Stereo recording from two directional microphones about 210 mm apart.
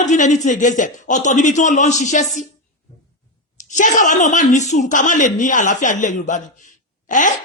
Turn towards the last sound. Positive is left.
turn(degrees=35)  # may be behind; listen again after turning